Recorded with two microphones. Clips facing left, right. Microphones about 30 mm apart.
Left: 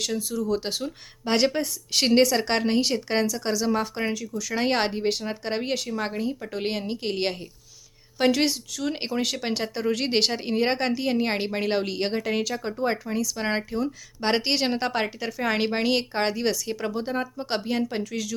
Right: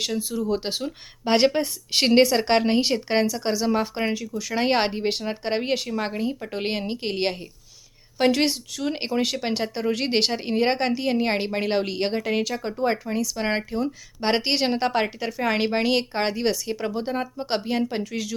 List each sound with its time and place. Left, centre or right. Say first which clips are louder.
0.2 s speech: right 1 dB; right